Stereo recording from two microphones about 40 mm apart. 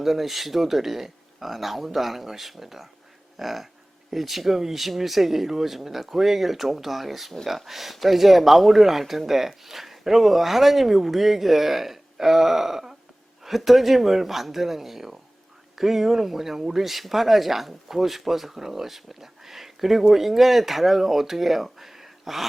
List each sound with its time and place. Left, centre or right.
0.0 s speech: centre